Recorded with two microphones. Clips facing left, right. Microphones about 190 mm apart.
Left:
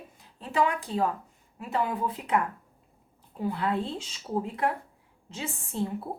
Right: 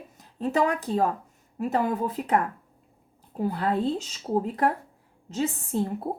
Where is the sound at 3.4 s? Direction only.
40° right (ahead or behind).